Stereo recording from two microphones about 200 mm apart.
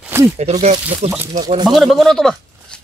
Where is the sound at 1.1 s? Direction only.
10° right (ahead or behind).